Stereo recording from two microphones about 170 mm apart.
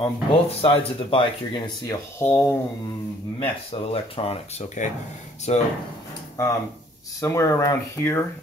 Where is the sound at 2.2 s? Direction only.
10° left (ahead or behind).